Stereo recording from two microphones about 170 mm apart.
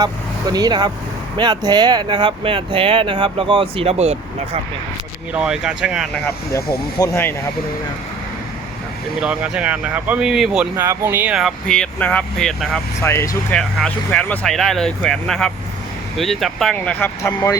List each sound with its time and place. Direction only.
0.0 s speech: 20° right (ahead or behind); by 4.6 s 40° right (ahead or behind)
5.3 s speech: 5° right (ahead or behind)
6.1 s speech: 15° left (ahead or behind)
9.2 s speech: 5° right (ahead or behind)
13.0 s speech: 15° left (ahead or behind)
13.6 s speech: 5° left (ahead or behind)